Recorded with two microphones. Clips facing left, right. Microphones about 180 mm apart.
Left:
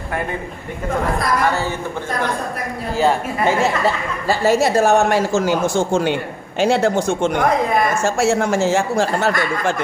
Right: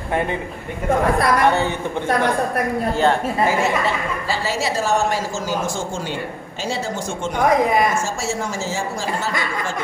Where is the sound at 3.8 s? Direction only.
50° left (ahead or behind).